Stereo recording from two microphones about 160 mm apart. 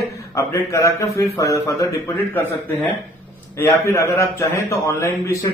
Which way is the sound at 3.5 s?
15° left (ahead or behind).